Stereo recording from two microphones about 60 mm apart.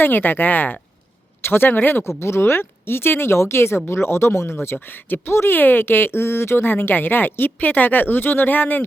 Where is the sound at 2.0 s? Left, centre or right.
Left.